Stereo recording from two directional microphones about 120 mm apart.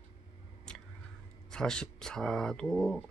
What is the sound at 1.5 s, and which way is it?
Speech, 5° left (ahead or behind).